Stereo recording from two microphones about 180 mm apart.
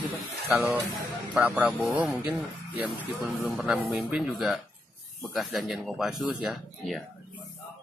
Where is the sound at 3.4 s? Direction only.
Centre (ahead or behind).